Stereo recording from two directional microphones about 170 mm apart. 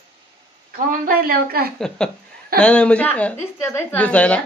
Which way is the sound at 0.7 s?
55° right (ahead or behind).